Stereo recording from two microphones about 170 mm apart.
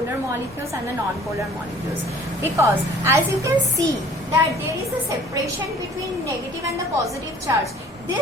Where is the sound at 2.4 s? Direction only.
15° right (ahead or behind).